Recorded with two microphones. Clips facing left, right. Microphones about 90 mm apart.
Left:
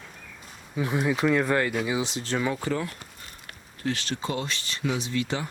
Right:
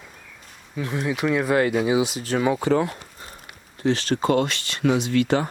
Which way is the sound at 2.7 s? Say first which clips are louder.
Right 8 dB; 65° right (ahead or behind).